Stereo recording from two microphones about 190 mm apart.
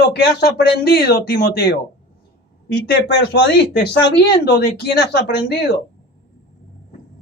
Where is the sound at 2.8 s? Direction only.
55° left (ahead or behind).